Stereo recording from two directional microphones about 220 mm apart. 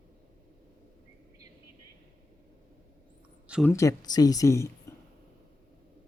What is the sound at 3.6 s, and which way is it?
Speech, 15° left (ahead or behind).